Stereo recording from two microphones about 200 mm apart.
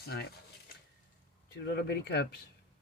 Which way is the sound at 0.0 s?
50° left (ahead or behind).